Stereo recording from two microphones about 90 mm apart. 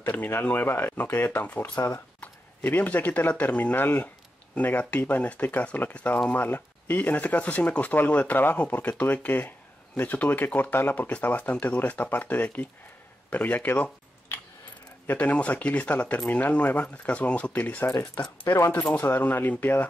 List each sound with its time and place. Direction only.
0.0 s speech: 20° left (ahead or behind)
1.8 s speech: 35° left (ahead or behind)
2.1 s speech: 20° left (ahead or behind)